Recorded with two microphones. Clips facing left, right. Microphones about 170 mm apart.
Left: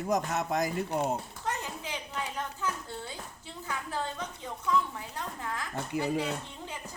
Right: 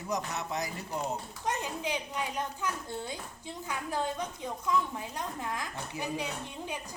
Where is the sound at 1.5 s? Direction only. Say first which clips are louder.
Right 3 dB; 15° right (ahead or behind).